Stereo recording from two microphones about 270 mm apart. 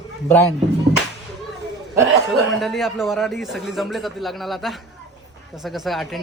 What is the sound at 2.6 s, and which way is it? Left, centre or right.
A man's voice, centre.